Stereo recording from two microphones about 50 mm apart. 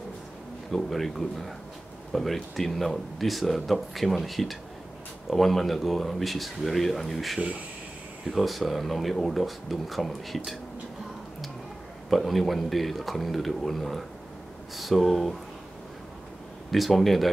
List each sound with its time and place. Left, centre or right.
0.7 s speech: centre
7.3 s speech: right
8.3 s speech: centre
12.1 s speech: centre
16.7 s speech: centre